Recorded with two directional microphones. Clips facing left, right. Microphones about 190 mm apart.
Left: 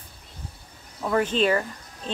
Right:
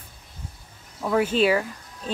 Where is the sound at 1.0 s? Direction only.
5° right (ahead or behind).